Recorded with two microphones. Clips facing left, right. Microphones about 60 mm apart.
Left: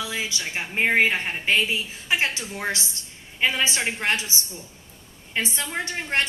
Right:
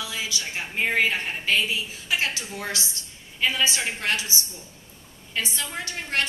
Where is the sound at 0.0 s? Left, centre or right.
Left.